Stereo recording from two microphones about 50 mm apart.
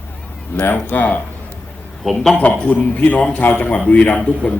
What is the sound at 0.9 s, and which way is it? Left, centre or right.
Speech, left.